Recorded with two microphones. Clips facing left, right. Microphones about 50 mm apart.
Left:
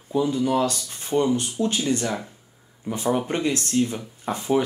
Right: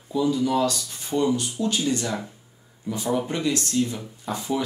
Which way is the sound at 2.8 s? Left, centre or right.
Left.